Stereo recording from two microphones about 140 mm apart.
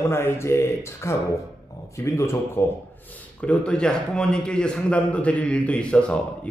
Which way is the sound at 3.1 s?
10° left (ahead or behind).